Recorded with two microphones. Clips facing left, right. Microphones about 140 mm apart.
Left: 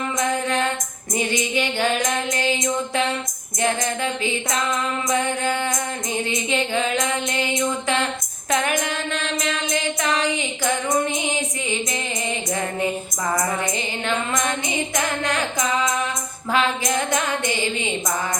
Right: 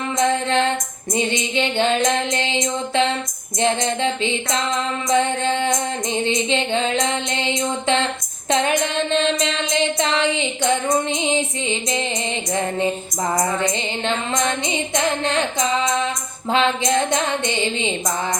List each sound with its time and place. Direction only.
0.2 s music: 25° right (ahead or behind)
13.3 s music: 25° right (ahead or behind)